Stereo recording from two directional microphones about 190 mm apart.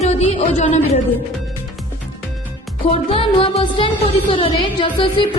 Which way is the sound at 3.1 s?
30° left (ahead or behind).